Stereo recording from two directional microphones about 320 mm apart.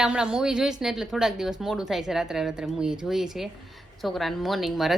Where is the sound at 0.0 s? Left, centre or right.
Centre.